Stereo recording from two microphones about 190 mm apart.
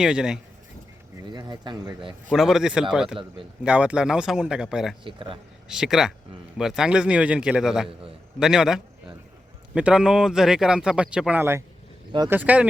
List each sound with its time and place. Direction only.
0.0 s speech: 5° right (ahead or behind)
1.3 s speech: 20° right (ahead or behind)
2.3 s speech: centre (ahead or behind)
5.0 s speech: 25° right (ahead or behind)
5.6 s speech: 5° right (ahead or behind)